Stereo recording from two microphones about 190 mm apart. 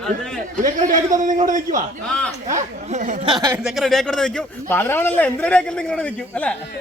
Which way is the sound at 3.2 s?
20° right (ahead or behind).